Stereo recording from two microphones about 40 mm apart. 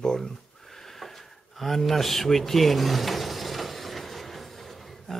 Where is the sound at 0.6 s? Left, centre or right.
Centre.